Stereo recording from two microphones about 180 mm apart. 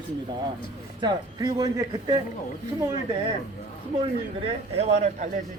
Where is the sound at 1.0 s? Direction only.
20° right (ahead or behind).